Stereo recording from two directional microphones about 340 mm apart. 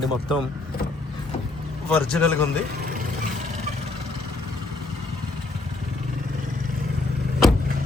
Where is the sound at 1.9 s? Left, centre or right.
Centre.